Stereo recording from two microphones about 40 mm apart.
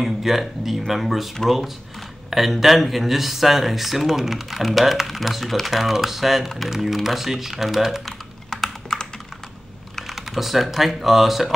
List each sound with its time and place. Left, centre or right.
0.0 s speech: centre
8.0 s typing: centre
8.9 s computer keyboard: centre
10.1 s speech: centre